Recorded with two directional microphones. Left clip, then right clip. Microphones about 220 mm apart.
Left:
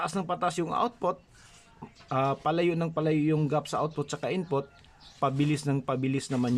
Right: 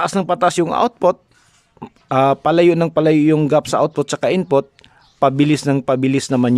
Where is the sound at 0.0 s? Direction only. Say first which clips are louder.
Right 14 dB; 45° right (ahead or behind).